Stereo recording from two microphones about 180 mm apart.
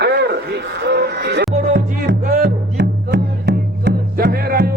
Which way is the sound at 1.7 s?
55° right (ahead or behind).